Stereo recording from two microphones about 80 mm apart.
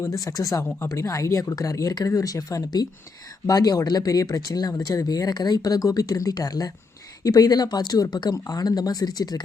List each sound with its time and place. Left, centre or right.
0.0 s speech: left